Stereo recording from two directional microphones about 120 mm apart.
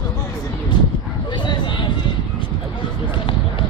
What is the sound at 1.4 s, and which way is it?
Vehicle, 40° left (ahead or behind).